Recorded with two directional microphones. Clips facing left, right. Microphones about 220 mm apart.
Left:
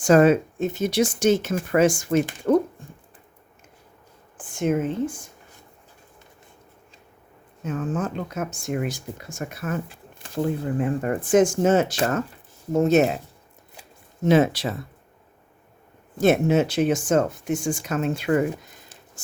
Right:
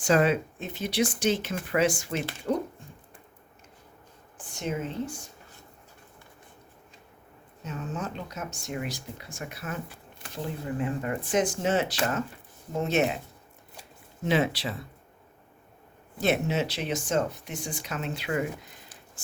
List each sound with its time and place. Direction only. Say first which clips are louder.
0.0 s speech: left 7 dB; 45° left (ahead or behind)
2.5 s a sound: left 9 dB; 60° left (ahead or behind)
4.4 s speech: left 9 dB; 50° left (ahead or behind)
7.6 s speech: left 8 dB; 50° left (ahead or behind)
14.3 s speech: left 7 dB; 45° left (ahead or behind)
16.2 s speech: left 8 dB; 50° left (ahead or behind)